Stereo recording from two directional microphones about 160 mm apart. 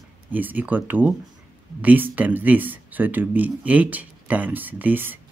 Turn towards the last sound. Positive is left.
turn(degrees=-10)  # may be behind; listen again after turning